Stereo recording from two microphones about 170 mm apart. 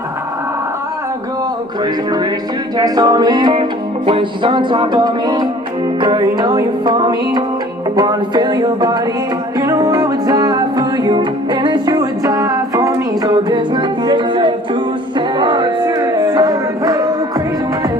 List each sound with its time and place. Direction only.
2.7 s music: 20° right (ahead or behind)